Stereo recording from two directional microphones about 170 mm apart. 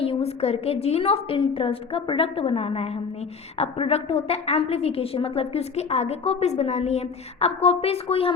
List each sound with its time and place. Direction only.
0.0 s a woman's voice: 35° left (ahead or behind)